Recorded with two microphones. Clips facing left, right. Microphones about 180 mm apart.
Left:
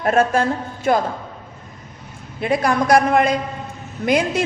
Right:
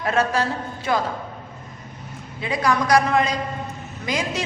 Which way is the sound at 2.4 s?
55° left (ahead or behind).